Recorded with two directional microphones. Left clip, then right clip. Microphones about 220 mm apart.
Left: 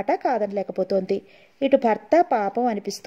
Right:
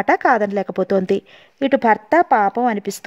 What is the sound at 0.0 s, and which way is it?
Speech, 40° right (ahead or behind).